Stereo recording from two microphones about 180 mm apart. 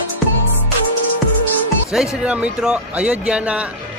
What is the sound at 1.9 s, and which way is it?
Speech, 5° right (ahead or behind).